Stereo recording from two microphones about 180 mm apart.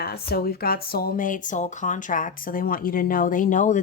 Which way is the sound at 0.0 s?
60° left (ahead or behind).